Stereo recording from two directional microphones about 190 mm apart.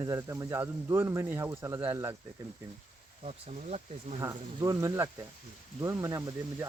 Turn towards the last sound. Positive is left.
turn(degrees=-20)  # may be behind; listen again after turning